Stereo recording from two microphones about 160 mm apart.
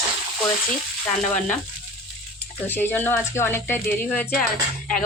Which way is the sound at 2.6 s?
10° left (ahead or behind).